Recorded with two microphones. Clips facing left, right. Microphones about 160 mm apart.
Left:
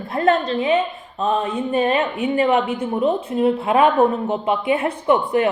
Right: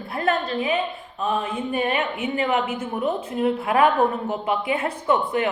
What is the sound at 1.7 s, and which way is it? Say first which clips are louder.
A woman's voice: left 6 dB; 35° left (ahead or behind).